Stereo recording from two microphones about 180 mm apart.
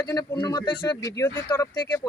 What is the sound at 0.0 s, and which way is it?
Speech, 20° left (ahead or behind).